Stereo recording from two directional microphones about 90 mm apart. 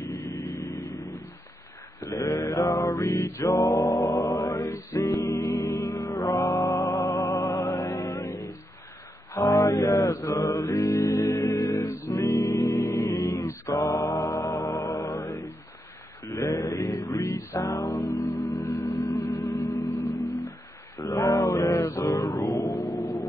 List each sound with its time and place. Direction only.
0.0 s vehicle: 35° left (ahead or behind)
2.0 s mantra: 35° left (ahead or behind)
3.5 s male singing: 40° left (ahead or behind)
4.3 s a capella: 40° left (ahead or behind)
5.5 s music: 35° left (ahead or behind)
9.3 s mantra: 35° left (ahead or behind)
10.3 s music: 35° left (ahead or behind)
16.3 s mantra: 35° left (ahead or behind)
17.2 s music: 30° left (ahead or behind)